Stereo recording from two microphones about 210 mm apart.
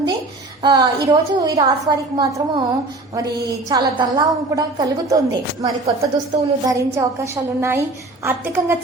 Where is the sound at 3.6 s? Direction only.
20° right (ahead or behind).